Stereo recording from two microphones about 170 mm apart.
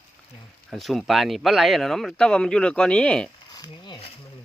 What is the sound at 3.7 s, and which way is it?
Mechanisms, 30° left (ahead or behind).